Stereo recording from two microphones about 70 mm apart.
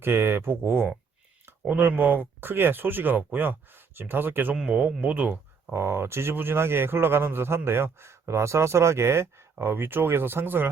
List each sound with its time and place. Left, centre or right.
0.0 s speech: right
4.5 s speech: centre
5.7 s speech: right